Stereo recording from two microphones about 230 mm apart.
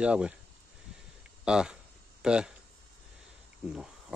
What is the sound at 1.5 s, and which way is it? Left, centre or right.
Speech, centre.